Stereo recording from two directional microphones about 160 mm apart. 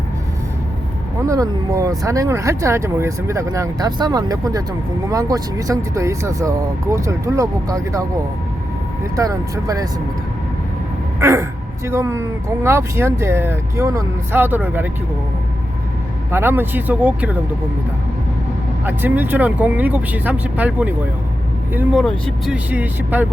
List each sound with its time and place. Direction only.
1.2 s speech: 20° right (ahead or behind)
9.1 s speech: 20° right (ahead or behind)
11.2 s speech: 15° right (ahead or behind)
16.3 s speech: 15° right (ahead or behind)
18.9 s speech: 10° right (ahead or behind)